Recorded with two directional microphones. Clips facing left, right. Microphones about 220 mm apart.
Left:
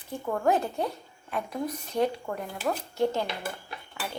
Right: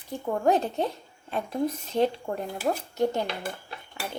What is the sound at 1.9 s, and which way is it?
Speech, 25° right (ahead or behind).